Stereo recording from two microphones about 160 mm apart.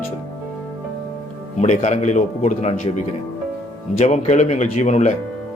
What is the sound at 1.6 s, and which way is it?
Speech, 45° left (ahead or behind).